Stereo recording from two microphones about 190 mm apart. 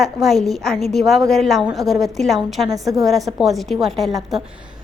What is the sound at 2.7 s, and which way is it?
Speech, 20° right (ahead or behind).